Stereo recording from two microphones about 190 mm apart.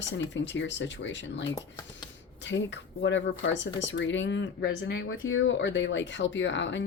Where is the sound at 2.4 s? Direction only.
70° left (ahead or behind).